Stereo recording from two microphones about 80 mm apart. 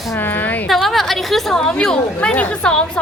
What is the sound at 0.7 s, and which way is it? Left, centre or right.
A woman's voice, centre.